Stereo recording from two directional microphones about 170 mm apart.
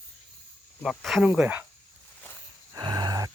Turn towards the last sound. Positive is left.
turn(degrees=-25)  # may be behind; listen again after turning